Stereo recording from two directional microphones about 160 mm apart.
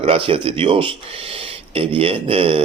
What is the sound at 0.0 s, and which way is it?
Speech, 35° right (ahead or behind).